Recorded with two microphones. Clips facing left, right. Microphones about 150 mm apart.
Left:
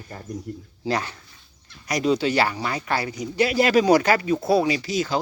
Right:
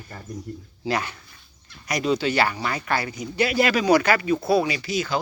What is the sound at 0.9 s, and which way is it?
Speech, 35° left (ahead or behind).